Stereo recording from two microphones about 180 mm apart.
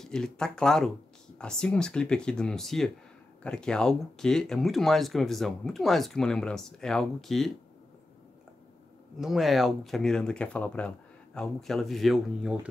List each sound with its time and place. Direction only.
0.0 s speech: 5° left (ahead or behind)
9.2 s speech: centre (ahead or behind)